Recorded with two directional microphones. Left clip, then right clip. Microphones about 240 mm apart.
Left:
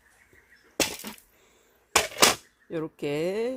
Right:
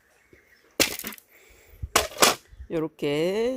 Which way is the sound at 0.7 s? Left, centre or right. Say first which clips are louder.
Right 3 dB; right.